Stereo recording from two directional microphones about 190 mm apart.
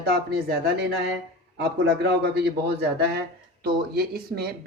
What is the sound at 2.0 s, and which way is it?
Speech, 60° right (ahead or behind).